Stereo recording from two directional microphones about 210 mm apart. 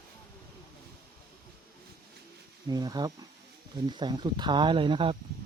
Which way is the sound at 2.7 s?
20° right (ahead or behind).